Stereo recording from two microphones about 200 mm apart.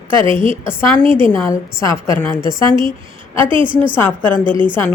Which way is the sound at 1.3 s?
15° left (ahead or behind).